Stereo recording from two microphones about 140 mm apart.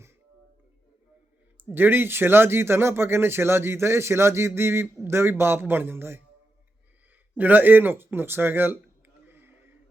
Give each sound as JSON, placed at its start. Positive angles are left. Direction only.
{"t": 1.5, "sound": "speech", "side_deg": -15}
{"t": 7.3, "sound": "speech", "side_deg": -10}
{"t": 9.2, "sound": "a sound", "side_deg": -15}